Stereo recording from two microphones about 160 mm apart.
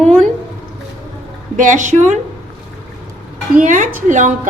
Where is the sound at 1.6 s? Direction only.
50° right (ahead or behind).